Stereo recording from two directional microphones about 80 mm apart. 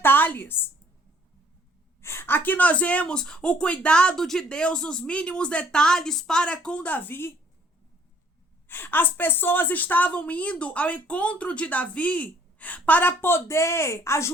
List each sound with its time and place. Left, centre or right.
0.0 s a sound: left
2.0 s a woman's voice: left
8.6 s a woman's voice: left